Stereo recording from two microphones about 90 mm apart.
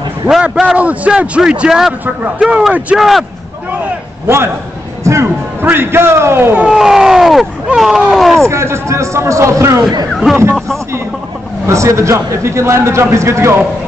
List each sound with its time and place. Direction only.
0.3 s a man's voice: 5° right (ahead or behind)
5.0 s a man's voice: 30° right (ahead or behind)
6.6 s speech: 5° right (ahead or behind)
8.5 s a man's voice: 30° right (ahead or behind)
10.3 s speech: centre (ahead or behind)
11.6 s a man's voice: 35° right (ahead or behind)